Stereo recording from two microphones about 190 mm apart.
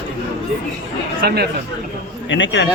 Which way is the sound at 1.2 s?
55° right (ahead or behind).